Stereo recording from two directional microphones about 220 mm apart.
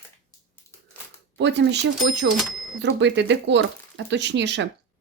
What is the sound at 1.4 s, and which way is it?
Speech, 50° right (ahead or behind).